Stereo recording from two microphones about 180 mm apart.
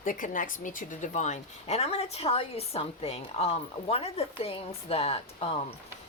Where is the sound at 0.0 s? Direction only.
50° left (ahead or behind).